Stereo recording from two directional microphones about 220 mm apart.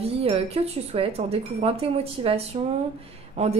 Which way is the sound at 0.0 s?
25° right (ahead or behind).